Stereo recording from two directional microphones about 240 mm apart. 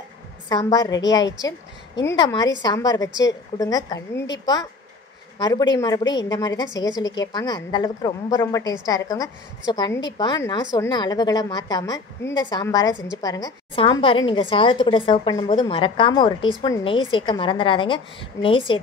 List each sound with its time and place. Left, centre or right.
0.5 s a woman's voice: centre